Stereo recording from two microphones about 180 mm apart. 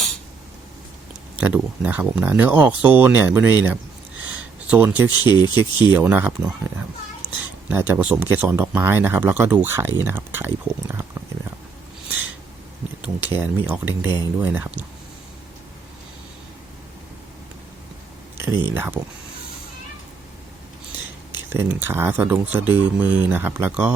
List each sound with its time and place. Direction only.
1.4 s speech: 5° right (ahead or behind)
7.7 s speech: 10° right (ahead or behind)
13.0 s speech: 10° right (ahead or behind)
18.7 s speech: 10° right (ahead or behind)
21.3 s speech: 10° right (ahead or behind)